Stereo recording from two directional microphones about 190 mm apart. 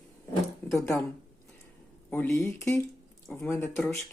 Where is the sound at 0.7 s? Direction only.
15° left (ahead or behind).